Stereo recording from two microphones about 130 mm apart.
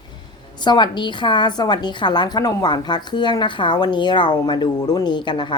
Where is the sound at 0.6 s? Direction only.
35° left (ahead or behind).